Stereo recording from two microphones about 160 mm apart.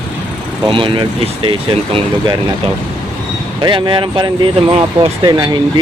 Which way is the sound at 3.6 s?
30° right (ahead or behind).